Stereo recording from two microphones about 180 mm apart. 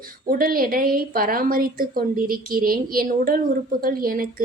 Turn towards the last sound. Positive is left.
turn(degrees=-55)  # may be behind; listen again after turning